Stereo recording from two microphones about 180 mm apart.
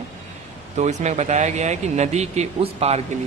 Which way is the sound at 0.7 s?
40° right (ahead or behind).